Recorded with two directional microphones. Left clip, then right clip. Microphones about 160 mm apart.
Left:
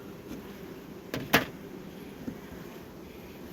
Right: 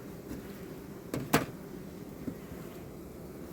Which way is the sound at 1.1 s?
90° right.